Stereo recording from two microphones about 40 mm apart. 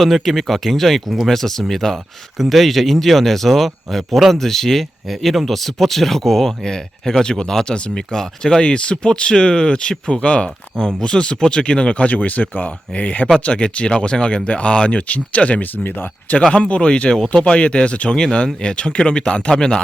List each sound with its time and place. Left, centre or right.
0.0 s speech: centre
2.4 s speech: centre
8.6 s speech: left
15.7 s speech: left
16.5 s speech: left